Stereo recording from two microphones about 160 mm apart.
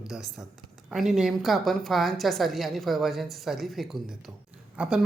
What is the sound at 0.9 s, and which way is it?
Speech, 5° right (ahead or behind).